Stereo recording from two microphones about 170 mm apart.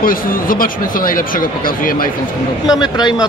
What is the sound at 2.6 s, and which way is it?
Speech, 25° left (ahead or behind).